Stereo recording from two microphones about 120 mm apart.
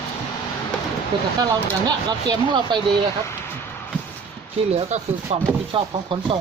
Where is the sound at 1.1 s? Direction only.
40° right (ahead or behind).